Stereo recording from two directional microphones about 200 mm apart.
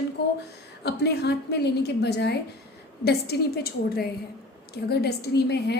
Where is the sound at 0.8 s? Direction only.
55° left (ahead or behind).